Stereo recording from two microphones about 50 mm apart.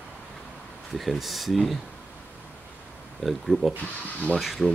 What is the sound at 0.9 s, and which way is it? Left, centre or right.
Speech, centre.